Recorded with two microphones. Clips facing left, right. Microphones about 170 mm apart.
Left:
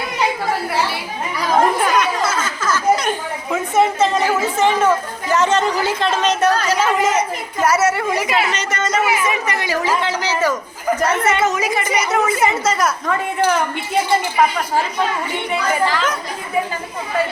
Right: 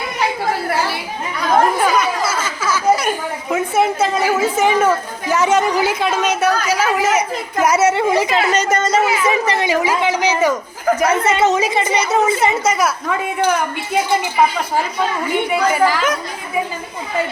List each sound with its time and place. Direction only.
1.4 s a sound: centre (ahead or behind)
4.6 s speech: 10° right (ahead or behind); by 9.6 s 30° right (ahead or behind)
9.6 s a woman's voice: 15° right (ahead or behind)
12.7 s speech: 10° right (ahead or behind)
15.7 s speech: 10° right (ahead or behind)